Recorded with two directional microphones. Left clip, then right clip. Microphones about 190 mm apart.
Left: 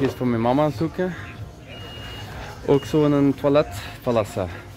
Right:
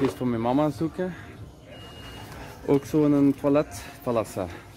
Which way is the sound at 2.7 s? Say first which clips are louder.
Left 3 dB; 15° left (ahead or behind).